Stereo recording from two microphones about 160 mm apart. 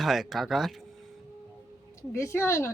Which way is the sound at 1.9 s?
20° left (ahead or behind).